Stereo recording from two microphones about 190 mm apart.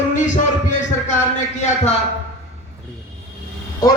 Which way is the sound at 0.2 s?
40° left (ahead or behind).